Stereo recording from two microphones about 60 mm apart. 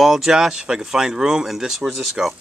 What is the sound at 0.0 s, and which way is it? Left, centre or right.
Speech, centre.